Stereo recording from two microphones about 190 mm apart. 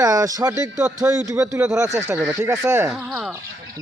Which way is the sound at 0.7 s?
5° right (ahead or behind).